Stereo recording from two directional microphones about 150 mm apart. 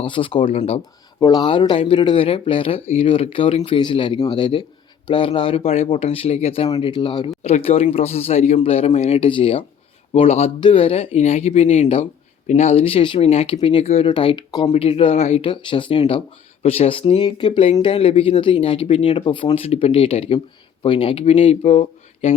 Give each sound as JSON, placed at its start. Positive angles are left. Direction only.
{"t": 0.0, "sound": "speech", "side_deg": 35}
{"t": 1.2, "sound": "speech", "side_deg": 25}
{"t": 7.4, "sound": "speech", "side_deg": 40}